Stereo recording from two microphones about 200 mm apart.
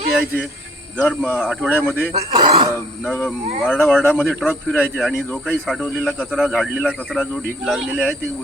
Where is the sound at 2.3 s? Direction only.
25° right (ahead or behind).